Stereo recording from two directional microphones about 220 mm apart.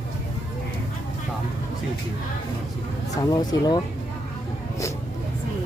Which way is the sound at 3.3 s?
20° left (ahead or behind).